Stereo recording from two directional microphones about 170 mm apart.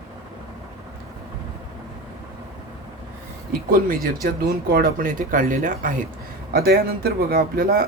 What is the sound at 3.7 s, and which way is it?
Speech, 55° right (ahead or behind).